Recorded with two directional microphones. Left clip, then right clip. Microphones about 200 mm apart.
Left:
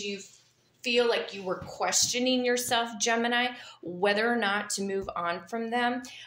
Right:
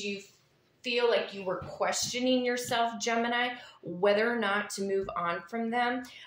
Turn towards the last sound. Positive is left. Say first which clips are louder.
# left 1 dB
turn(degrees=40)  # may be behind; listen again after turning